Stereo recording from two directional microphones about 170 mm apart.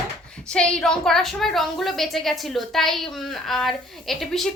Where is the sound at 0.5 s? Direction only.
5° left (ahead or behind).